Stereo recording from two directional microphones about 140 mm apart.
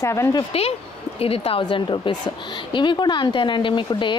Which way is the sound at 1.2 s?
45° left (ahead or behind).